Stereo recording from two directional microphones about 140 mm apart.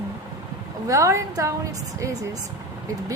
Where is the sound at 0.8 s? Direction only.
20° right (ahead or behind).